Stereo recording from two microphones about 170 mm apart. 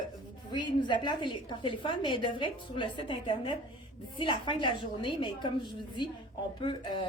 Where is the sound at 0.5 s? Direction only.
25° left (ahead or behind).